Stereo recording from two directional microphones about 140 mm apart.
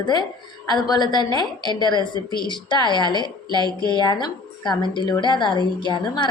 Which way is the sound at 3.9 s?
35° left (ahead or behind).